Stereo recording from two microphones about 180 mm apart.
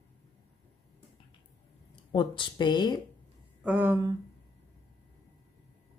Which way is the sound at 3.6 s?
10° right (ahead or behind).